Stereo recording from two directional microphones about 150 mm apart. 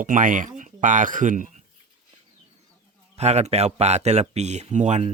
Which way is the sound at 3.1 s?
45° right (ahead or behind).